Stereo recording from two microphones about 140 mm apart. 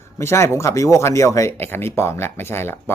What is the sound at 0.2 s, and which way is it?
Speech, 20° left (ahead or behind).